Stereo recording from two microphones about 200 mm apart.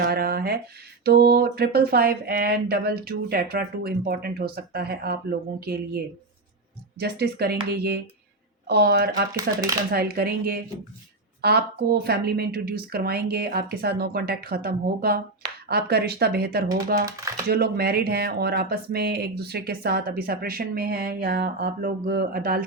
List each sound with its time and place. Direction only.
0.0 s speech: 50° right (ahead or behind)
7.0 s speech: 50° right (ahead or behind)
9.3 s speech: 15° right (ahead or behind)
9.9 s speech: 50° right (ahead or behind)
16.6 s speech: 15° right (ahead or behind)
17.5 s speech: 50° right (ahead or behind)